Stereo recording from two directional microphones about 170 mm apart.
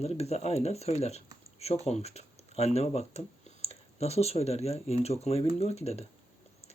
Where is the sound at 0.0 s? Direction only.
40° left (ahead or behind).